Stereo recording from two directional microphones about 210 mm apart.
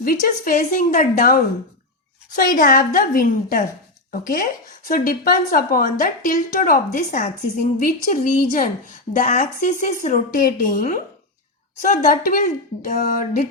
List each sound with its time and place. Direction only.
0.0 s a woman's voice: 45° left (ahead or behind)